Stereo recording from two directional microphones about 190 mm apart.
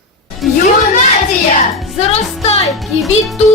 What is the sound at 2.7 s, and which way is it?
Speech, centre (ahead or behind).